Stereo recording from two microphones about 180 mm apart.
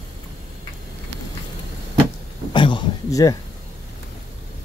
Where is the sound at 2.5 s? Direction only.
25° left (ahead or behind).